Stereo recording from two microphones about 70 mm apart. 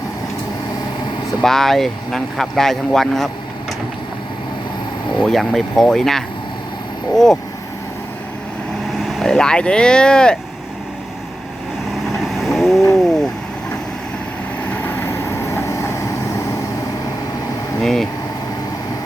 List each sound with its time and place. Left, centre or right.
1.4 s speech: centre
5.1 s speech: centre
9.0 s speech: centre
12.4 s vehicle: centre
15.5 s vehicle: left
17.8 s speech: centre